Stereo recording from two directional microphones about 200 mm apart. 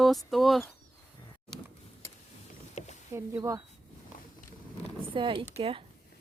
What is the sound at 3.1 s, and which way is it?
Speech, 15° right (ahead or behind).